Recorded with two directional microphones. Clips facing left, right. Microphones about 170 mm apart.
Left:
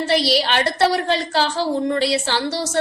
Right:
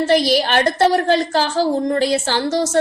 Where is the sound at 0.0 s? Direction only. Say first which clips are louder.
Right 3 dB; 45° right (ahead or behind).